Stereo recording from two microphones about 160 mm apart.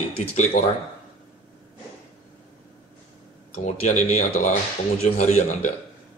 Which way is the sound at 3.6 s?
50° left (ahead or behind).